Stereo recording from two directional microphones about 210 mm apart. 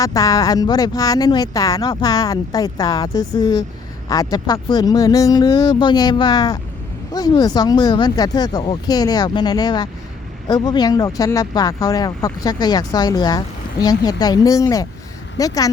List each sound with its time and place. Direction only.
0.0 s speech: 15° left (ahead or behind)